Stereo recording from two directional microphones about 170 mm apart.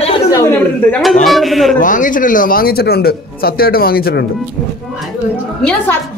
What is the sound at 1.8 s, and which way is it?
Speech, 50° left (ahead or behind).